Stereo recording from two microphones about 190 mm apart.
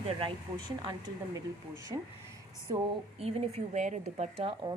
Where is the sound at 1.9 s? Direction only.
25° right (ahead or behind).